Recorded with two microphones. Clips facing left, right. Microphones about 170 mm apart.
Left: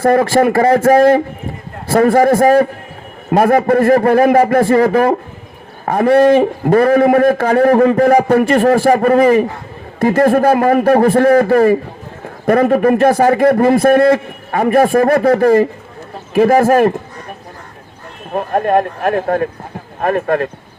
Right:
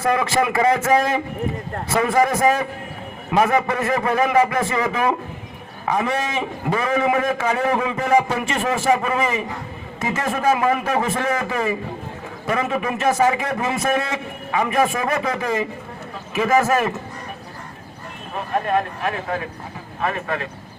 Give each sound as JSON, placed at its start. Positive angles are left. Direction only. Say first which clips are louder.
{"t": 0.0, "sound": "a man's voice", "louder": "left 9 dB", "side_deg": 50}
{"t": 18.3, "sound": "a man's voice", "louder": "left 8 dB", "side_deg": 50}